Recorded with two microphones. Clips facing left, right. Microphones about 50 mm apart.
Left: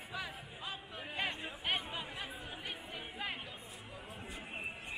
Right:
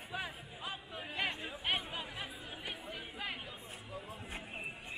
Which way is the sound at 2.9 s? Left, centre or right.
Centre.